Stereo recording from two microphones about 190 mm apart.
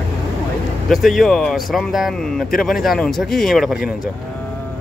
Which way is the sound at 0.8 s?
Centre (ahead or behind).